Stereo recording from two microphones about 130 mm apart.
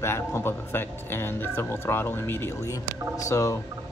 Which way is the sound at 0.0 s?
20° left (ahead or behind).